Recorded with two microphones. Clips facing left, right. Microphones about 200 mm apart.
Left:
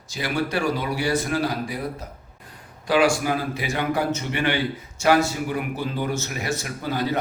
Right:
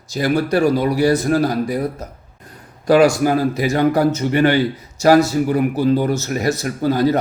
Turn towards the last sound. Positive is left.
turn(degrees=-40)  # may be behind; listen again after turning